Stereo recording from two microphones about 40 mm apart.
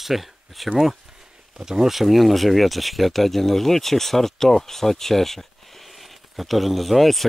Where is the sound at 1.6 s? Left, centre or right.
Centre.